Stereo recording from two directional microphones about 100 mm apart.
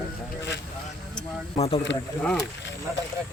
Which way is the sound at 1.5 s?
70° left (ahead or behind).